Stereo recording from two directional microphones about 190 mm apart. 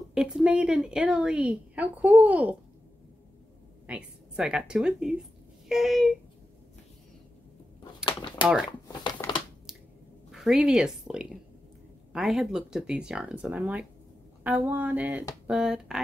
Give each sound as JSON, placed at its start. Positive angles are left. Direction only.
{"t": 0.1, "sound": "a woman's voice", "side_deg": -5}
{"t": 3.8, "sound": "a woman's voice", "side_deg": -5}
{"t": 7.8, "sound": "a sound", "side_deg": 25}
{"t": 8.8, "sound": "crumpling", "side_deg": 20}
{"t": 9.7, "sound": "squish", "side_deg": 0}
{"t": 10.3, "sound": "a woman's voice", "side_deg": -5}